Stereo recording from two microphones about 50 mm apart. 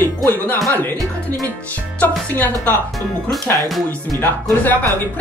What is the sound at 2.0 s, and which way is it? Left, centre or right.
Speech, left.